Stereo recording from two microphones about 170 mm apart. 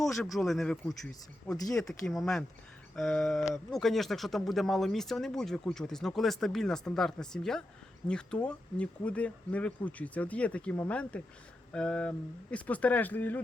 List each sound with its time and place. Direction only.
0.0 s speech: centre (ahead or behind)